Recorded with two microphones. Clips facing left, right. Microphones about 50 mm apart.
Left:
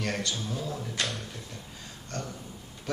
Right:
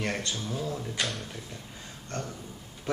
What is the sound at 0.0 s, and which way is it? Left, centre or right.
Speech, right.